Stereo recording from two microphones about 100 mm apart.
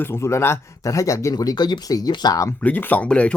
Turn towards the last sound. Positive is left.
turn(degrees=10)  # may be behind; listen again after turning